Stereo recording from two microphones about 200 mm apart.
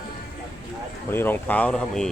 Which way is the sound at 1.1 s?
10° left (ahead or behind).